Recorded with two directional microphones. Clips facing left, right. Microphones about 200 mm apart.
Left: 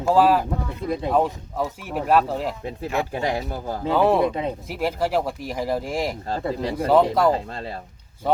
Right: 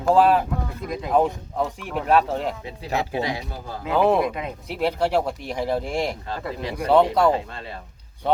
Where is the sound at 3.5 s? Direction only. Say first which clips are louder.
Left 5 dB; 45° left (ahead or behind).